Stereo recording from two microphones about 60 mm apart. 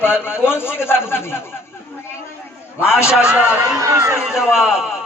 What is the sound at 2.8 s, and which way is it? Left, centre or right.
Speech, left.